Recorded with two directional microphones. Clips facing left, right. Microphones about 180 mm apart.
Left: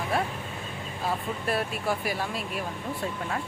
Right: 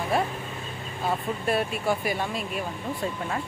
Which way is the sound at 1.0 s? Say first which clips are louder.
Right 3 dB; centre (ahead or behind).